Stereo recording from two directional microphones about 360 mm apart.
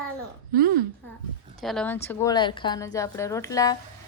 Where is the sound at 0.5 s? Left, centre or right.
Right.